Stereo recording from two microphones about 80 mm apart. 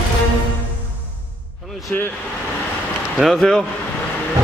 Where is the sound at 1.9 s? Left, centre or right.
Left.